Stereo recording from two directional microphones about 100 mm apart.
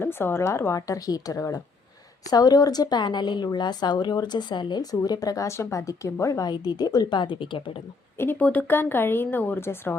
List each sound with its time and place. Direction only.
0.0 s a woman's voice: 25° left (ahead or behind)
6.4 s a woman's voice: 45° left (ahead or behind)
8.2 s speech: 20° left (ahead or behind)